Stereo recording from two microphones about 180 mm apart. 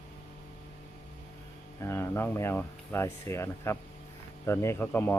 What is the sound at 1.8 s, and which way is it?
A man's voice, 15° left (ahead or behind).